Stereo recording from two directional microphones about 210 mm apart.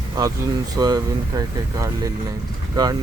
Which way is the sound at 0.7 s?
20° right (ahead or behind).